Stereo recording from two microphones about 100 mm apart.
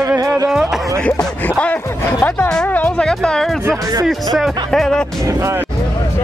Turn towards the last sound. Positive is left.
turn(degrees=-25)  # may be behind; listen again after turning